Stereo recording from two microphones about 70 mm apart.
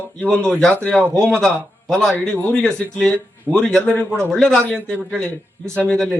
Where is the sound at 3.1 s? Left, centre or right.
Centre.